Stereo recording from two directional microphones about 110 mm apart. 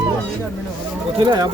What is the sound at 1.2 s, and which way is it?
Speech, 45° right (ahead or behind).